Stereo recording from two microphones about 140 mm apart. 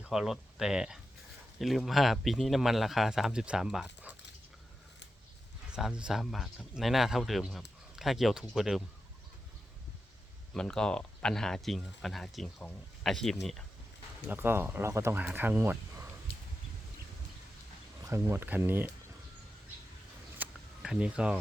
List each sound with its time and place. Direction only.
0.0 s speech: 5° right (ahead or behind)
5.7 s speech: 5° right (ahead or behind)
10.5 s speech: 5° left (ahead or behind)
14.3 s speech: 15° right (ahead or behind)
18.0 s speech: 20° right (ahead or behind)
20.4 s a sound: 5° right (ahead or behind)